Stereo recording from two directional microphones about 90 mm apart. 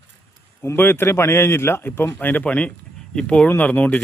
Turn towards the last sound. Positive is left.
turn(degrees=15)  # may be behind; listen again after turning